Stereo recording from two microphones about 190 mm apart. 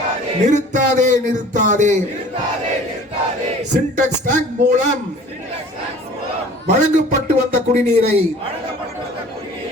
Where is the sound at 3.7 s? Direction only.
40° right (ahead or behind).